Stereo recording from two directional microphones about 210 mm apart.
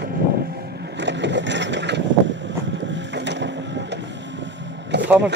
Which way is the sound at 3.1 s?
55° right (ahead or behind).